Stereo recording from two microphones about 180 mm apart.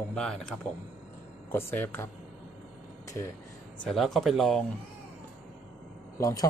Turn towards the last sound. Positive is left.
turn(degrees=20)  # may be behind; listen again after turning